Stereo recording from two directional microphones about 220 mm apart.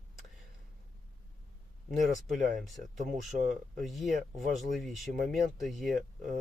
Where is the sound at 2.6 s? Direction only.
Centre (ahead or behind).